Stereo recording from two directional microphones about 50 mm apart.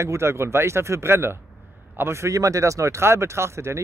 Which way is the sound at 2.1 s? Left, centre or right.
Right.